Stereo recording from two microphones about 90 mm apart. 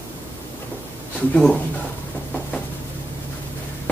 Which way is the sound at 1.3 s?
10° left (ahead or behind).